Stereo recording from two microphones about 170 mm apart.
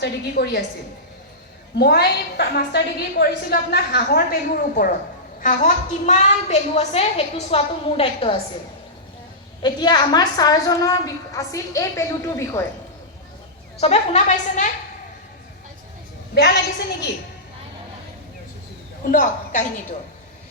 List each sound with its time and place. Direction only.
0.0 s a woman's voice: 75° left (ahead or behind)
1.8 s a woman's voice: 75° left (ahead or behind); by 4.9 s 60° left (ahead or behind)
5.4 s a woman's voice: 50° left (ahead or behind); by 8.4 s 35° left (ahead or behind)
9.6 s a woman's voice: 25° left (ahead or behind)
13.7 s a woman's voice: 40° left (ahead or behind)
16.3 s a woman's voice: 75° left (ahead or behind)
19.1 s a woman's voice: 45° left (ahead or behind)